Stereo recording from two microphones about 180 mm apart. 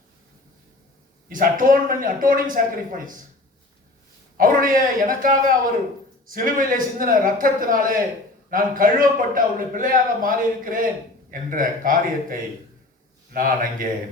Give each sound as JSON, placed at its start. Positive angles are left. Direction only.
{"t": 1.3, "sound": "a man's voice", "side_deg": -50}
{"t": 4.4, "sound": "a man's voice", "side_deg": -50}